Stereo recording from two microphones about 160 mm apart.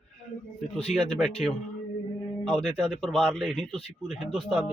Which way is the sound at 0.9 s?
5° left (ahead or behind).